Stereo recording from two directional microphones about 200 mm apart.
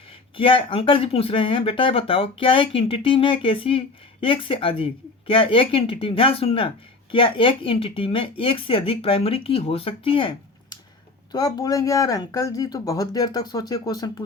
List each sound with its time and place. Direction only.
0.3 s speech: 25° left (ahead or behind)